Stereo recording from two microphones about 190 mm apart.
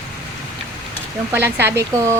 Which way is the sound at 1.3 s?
10° right (ahead or behind).